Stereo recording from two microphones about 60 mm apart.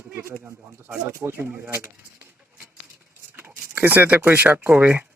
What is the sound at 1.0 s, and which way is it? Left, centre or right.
Speech, right.